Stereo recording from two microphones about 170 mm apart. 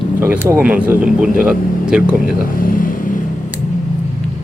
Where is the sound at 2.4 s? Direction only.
55° left (ahead or behind).